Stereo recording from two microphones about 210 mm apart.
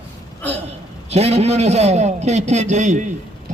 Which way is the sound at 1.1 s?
30° right (ahead or behind).